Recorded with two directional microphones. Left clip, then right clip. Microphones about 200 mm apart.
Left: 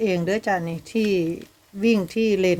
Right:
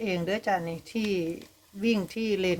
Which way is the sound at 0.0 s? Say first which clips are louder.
Left 6 dB; 20° left (ahead or behind).